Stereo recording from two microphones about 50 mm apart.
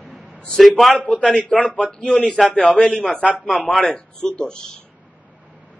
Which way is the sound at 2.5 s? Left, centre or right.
Left.